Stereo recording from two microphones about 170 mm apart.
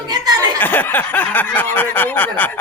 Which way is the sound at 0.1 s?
25° right (ahead or behind).